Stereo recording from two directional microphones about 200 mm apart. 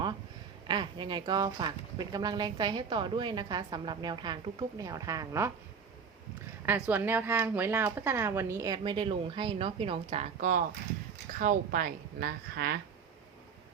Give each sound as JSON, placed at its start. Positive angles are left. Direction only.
{"t": 0.7, "sound": "a woman's voice", "side_deg": -25}
{"t": 6.7, "sound": "speech", "side_deg": -5}